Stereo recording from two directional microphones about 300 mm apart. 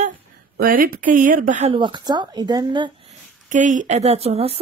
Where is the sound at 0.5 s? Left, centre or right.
Right.